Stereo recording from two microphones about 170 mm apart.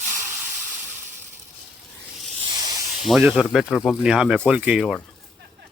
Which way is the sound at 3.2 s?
Centre (ahead or behind).